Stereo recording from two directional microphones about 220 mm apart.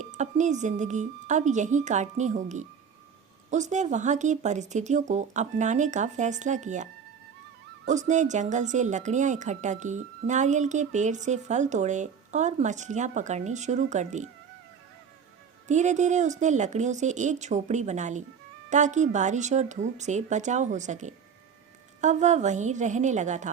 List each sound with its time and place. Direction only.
0.0 s speech: 35° right (ahead or behind)
7.9 s speech: 35° right (ahead or behind)
15.6 s speech: 35° right (ahead or behind)